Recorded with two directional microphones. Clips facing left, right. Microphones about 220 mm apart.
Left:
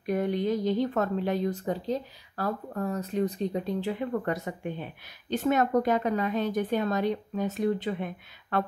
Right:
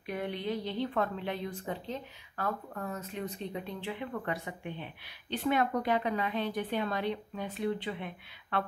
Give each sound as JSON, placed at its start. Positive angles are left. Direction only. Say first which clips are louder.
{"t": 0.0, "sound": "a woman's voice", "louder": "left 8 dB", "side_deg": 45}